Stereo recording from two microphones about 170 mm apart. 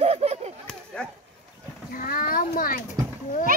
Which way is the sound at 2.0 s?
55° left (ahead or behind).